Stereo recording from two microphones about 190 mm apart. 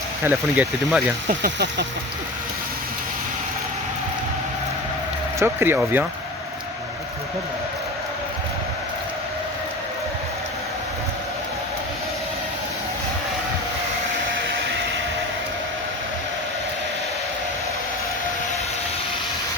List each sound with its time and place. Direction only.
0.3 s speech: 10° right (ahead or behind)
1.5 s speech: 65° right (ahead or behind)
5.4 s speech: 10° right (ahead or behind)